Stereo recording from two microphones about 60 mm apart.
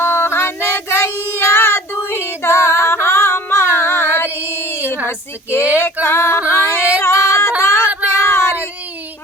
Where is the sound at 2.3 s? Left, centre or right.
Left.